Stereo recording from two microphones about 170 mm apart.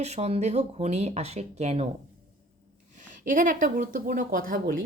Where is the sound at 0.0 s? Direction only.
40° right (ahead or behind).